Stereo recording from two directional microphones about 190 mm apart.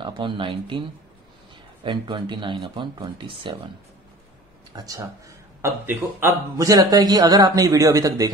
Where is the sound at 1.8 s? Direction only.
25° right (ahead or behind).